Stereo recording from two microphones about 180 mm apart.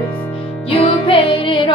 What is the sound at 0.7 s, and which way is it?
Music, 30° left (ahead or behind).